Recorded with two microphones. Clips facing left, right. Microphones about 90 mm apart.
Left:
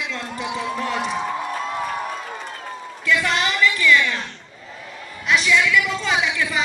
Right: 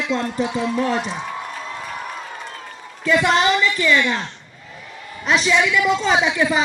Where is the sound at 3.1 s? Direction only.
25° right (ahead or behind).